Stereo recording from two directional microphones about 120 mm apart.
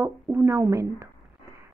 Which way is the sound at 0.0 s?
20° right (ahead or behind).